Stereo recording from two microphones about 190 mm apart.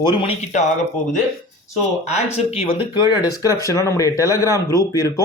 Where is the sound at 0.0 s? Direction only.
25° left (ahead or behind).